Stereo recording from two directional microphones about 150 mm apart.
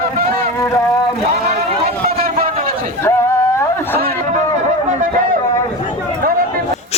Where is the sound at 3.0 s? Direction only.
15° left (ahead or behind).